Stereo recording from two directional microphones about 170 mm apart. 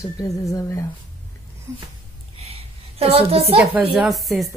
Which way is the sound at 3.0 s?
35° right (ahead or behind).